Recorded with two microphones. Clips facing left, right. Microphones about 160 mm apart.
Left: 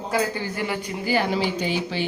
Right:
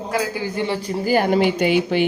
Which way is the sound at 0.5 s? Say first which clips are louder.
Right 5 dB; 30° right (ahead or behind).